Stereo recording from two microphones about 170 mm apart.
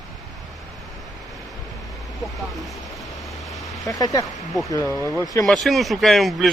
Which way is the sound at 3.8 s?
20° left (ahead or behind).